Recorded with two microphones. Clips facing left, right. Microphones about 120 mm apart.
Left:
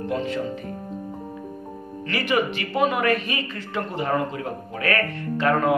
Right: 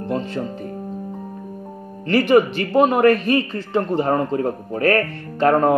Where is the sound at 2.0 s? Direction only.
45° right (ahead or behind).